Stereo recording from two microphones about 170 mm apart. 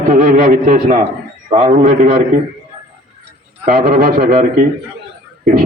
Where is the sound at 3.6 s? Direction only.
55° right (ahead or behind).